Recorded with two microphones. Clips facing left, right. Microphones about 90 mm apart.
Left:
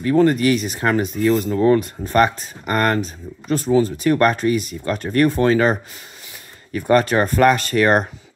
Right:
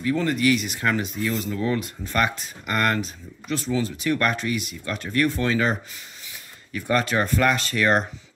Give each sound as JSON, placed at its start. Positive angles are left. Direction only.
{"t": 0.0, "sound": "speech", "side_deg": 45}